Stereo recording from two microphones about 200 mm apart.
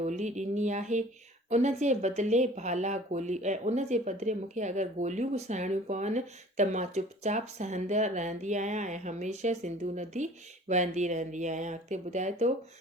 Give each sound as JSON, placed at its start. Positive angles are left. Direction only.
{"t": 0.0, "sound": "speech", "side_deg": -35}